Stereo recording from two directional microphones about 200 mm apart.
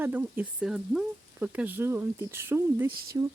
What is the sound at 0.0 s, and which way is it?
A woman's voice, 10° right (ahead or behind).